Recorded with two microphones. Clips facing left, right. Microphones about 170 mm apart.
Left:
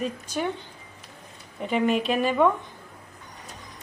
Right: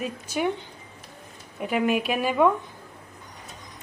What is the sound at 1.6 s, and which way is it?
Speech, 5° right (ahead or behind).